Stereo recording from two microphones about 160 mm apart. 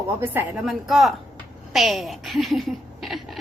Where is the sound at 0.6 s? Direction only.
Centre (ahead or behind).